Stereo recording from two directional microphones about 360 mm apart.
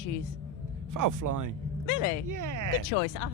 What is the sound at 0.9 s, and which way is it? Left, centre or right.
Speech, right.